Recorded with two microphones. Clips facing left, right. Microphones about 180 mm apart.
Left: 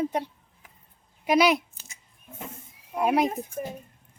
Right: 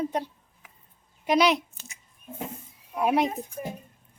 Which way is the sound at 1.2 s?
5° left (ahead or behind).